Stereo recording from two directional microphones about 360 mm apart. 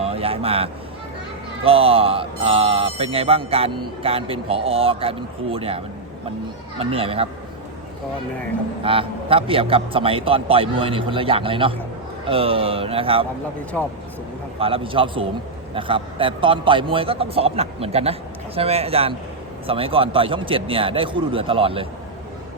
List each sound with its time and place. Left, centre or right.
0.0 s vehicle: centre
1.6 s speech: centre
8.8 s speech: centre
13.7 s speech: centre
14.6 s speech: centre